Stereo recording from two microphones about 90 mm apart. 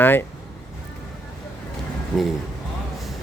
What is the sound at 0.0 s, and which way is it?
Speech, 25° left (ahead or behind).